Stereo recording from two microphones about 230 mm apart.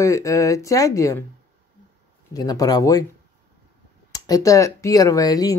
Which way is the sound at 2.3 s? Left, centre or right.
Centre.